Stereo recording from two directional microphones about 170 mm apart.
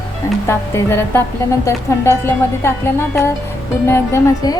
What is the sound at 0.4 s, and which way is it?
A woman's voice, 15° left (ahead or behind).